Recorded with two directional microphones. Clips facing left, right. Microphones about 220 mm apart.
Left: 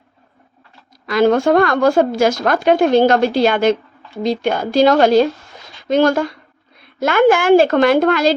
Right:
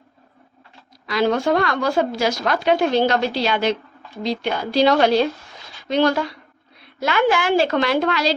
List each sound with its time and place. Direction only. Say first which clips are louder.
1.0 s speech: left 6 dB; 50° left (ahead or behind)